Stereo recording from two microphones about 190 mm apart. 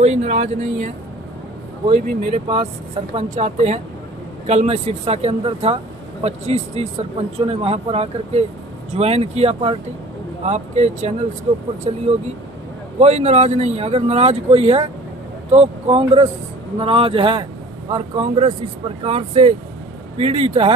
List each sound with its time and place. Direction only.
0.0 s a man's voice: 35° right (ahead or behind)